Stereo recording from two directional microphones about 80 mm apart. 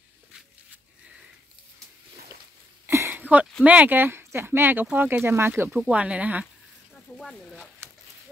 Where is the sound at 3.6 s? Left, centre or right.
Centre.